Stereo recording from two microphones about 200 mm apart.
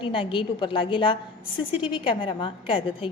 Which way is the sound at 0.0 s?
25° left (ahead or behind).